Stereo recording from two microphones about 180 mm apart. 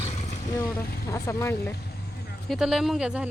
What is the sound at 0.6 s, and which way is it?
Speech, 15° left (ahead or behind).